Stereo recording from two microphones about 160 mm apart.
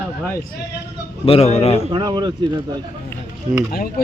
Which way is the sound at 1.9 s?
30° right (ahead or behind).